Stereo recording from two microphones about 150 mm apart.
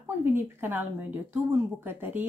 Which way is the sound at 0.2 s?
15° right (ahead or behind).